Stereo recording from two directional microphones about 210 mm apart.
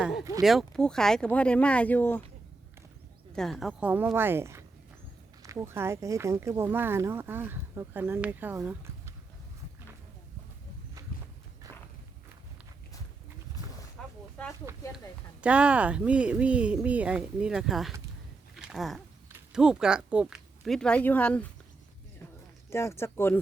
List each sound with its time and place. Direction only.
0.4 s speech: centre (ahead or behind)
3.3 s speech: centre (ahead or behind)
11.6 s walk: 15° right (ahead or behind)
14.0 s a sound: centre (ahead or behind)
14.9 s speech: 5° right (ahead or behind)
22.7 s speech: 15° left (ahead or behind)